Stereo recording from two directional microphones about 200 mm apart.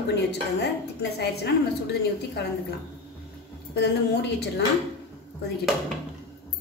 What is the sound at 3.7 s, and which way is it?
Speech, 55° left (ahead or behind).